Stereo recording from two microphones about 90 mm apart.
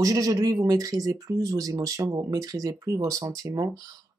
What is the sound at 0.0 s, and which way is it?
Speech, 40° right (ahead or behind).